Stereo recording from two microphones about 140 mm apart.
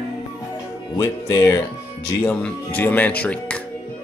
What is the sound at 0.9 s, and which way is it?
Speech, 20° left (ahead or behind).